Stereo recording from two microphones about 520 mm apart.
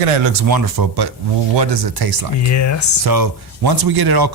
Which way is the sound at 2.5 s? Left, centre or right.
Left.